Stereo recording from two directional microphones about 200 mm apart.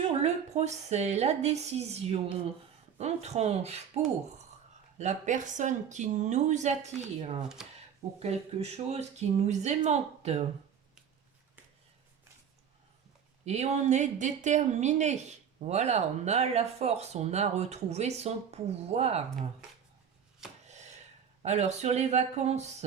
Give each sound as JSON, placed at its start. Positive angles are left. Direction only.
{"t": 0.2, "sound": "speech", "side_deg": -35}
{"t": 7.4, "sound": "speech", "side_deg": 0}
{"t": 8.2, "sound": "speech", "side_deg": -30}
{"t": 13.4, "sound": "speech", "side_deg": -35}
{"t": 20.7, "sound": "chopping", "side_deg": -35}
{"t": 21.4, "sound": "speech", "side_deg": -35}